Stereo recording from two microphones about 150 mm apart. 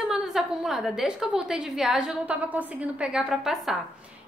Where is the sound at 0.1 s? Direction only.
Centre (ahead or behind).